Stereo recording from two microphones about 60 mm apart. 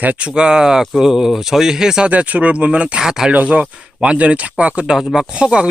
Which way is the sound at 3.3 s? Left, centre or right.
Right.